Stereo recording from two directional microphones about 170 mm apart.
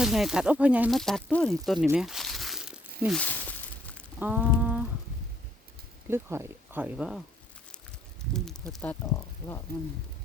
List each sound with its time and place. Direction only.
0.0 s speech: centre (ahead or behind)
1.9 s crumpling: centre (ahead or behind)
3.2 s a sound: 10° left (ahead or behind)
4.2 s humming: 10° right (ahead or behind)
6.1 s speech: 15° right (ahead or behind)
8.7 s speech: 10° left (ahead or behind)
9.7 s speech: 65° right (ahead or behind)